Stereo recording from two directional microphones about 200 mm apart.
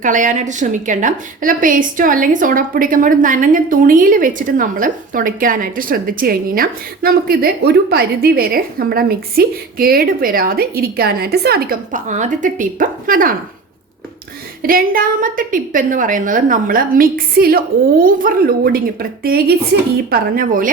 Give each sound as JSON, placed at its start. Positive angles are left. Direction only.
{"t": 0.0, "sound": "a woman's voice", "side_deg": -40}
{"t": 14.6, "sound": "a woman's voice", "side_deg": -45}